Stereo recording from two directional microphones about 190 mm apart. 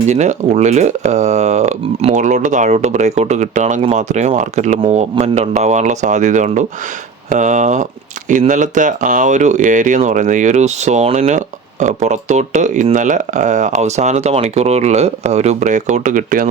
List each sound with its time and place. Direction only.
0.1 s speech: 35° right (ahead or behind)